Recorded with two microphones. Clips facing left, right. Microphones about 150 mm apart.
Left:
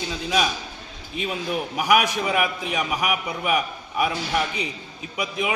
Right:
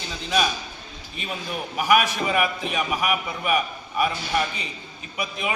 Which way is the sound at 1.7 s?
15° left (ahead or behind).